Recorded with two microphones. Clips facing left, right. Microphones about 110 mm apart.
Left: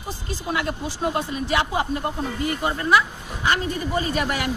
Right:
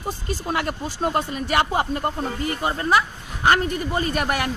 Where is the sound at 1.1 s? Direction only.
50° right (ahead or behind).